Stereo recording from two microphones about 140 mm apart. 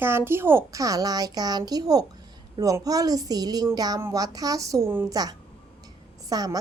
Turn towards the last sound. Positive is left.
turn(degrees=-25)  # may be behind; listen again after turning